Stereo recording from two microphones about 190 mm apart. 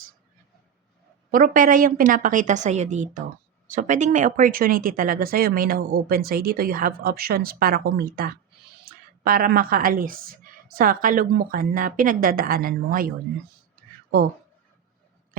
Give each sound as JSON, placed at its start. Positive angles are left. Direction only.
{"t": 1.3, "sound": "speech", "side_deg": -45}